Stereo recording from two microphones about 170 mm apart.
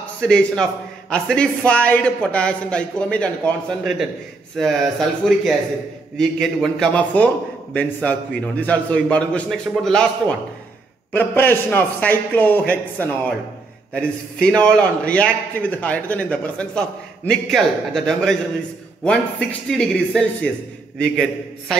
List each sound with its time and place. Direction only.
0.2 s a man's voice: 5° left (ahead or behind)
11.1 s a man's voice: 10° left (ahead or behind)